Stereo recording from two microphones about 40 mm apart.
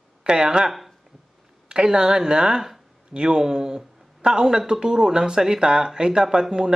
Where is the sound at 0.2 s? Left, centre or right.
Centre.